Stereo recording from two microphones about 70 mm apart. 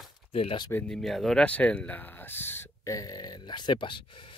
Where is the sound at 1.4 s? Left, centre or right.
Centre.